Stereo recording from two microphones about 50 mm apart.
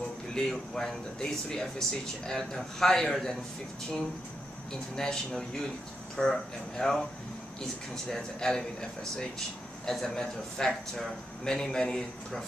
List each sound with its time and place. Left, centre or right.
0.3 s speech: centre
4.9 s speech: centre
9.8 s speech: centre